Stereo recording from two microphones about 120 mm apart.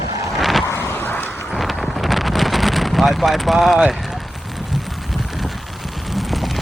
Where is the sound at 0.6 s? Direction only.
20° left (ahead or behind).